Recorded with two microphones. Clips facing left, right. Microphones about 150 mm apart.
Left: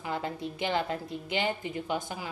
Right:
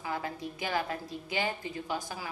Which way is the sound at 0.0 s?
25° left (ahead or behind).